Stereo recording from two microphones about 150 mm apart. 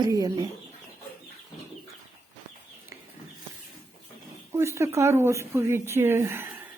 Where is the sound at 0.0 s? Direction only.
25° right (ahead or behind).